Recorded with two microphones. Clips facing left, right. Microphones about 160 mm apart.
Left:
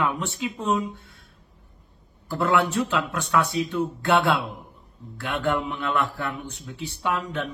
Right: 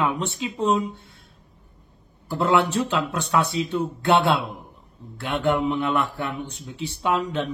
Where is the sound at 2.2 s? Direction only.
20° right (ahead or behind).